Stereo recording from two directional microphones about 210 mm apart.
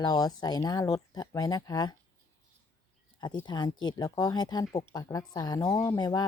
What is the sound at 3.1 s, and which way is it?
Speech, 20° left (ahead or behind).